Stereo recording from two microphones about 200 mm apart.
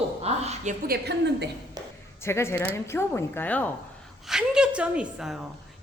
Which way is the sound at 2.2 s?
15° left (ahead or behind).